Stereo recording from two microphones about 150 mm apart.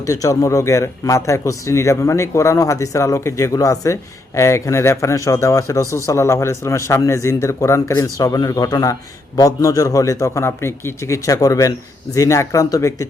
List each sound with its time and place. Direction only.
0.0 s speech: 20° left (ahead or behind)